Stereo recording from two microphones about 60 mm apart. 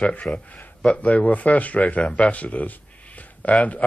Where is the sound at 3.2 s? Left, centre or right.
Left.